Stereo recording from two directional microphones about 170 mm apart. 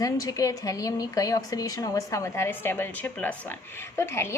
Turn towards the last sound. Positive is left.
turn(degrees=15)  # may be behind; listen again after turning